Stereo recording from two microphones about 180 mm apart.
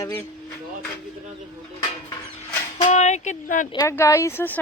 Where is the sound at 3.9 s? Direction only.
15° left (ahead or behind).